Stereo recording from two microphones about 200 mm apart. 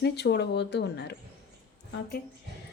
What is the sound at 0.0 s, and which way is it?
A woman's voice, 55° left (ahead or behind).